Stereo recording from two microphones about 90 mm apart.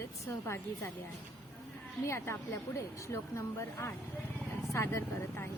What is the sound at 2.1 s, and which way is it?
Music, 30° left (ahead or behind).